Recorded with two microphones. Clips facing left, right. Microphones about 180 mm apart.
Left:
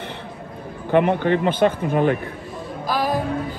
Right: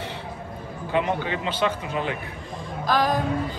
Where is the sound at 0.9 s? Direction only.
55° left (ahead or behind).